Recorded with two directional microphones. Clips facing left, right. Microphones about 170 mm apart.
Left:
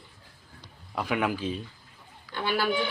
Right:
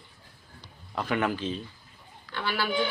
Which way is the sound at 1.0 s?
5° left (ahead or behind).